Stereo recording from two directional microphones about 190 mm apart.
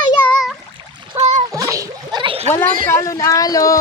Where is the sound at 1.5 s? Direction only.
15° right (ahead or behind).